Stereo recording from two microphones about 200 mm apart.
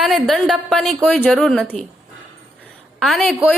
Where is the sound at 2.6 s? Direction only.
Centre (ahead or behind).